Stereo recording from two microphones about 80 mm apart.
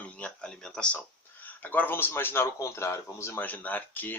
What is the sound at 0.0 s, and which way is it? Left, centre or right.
Speech, centre.